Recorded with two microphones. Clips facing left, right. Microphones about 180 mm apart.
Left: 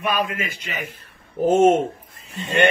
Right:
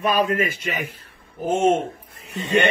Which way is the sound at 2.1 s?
60° right (ahead or behind).